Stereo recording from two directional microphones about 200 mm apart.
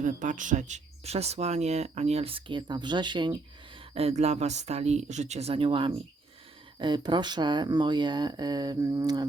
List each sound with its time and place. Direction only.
0.0 s speech: 40° right (ahead or behind); by 9.2 s 20° right (ahead or behind)